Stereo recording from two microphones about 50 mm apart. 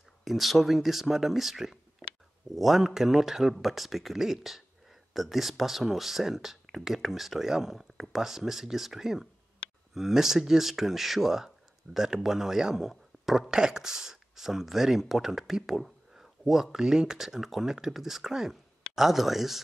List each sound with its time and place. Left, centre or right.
0.2 s speech: centre
13.5 s speech: centre